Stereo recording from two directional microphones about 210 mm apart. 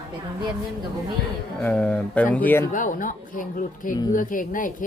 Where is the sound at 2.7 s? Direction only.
40° left (ahead or behind).